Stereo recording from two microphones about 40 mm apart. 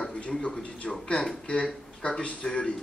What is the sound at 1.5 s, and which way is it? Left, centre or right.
A man's voice, left.